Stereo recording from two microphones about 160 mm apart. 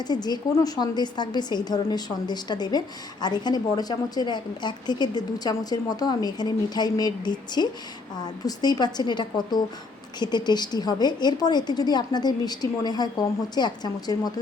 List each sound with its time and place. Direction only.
0.0 s a woman's voice: 25° left (ahead or behind)